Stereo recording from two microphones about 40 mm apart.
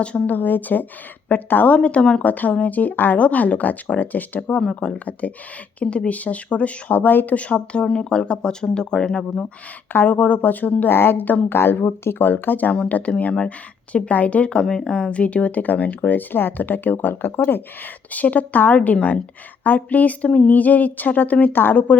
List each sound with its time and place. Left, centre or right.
0.3 s speech: left
3.2 s speech: left
4.6 s speech: left
7.1 s speech: left
7.3 s speech: left
9.9 s speech: left
10.8 s a woman's voice: left
12.9 s speech: left
20.5 s speech: left